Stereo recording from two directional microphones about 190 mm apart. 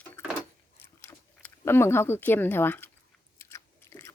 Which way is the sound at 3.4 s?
15° left (ahead or behind).